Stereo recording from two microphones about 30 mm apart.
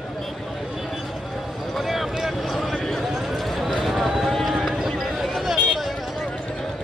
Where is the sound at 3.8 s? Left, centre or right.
Centre.